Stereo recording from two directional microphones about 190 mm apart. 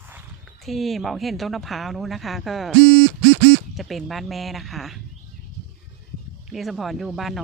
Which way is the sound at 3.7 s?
Centre (ahead or behind).